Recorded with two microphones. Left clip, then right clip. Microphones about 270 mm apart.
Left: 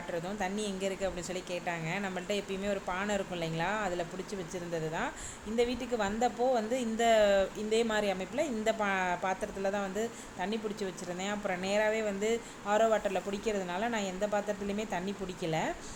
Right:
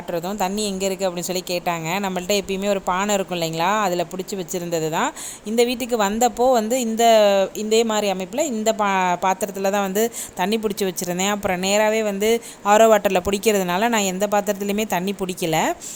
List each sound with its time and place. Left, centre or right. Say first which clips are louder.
0.1 s speech: right 12 dB; right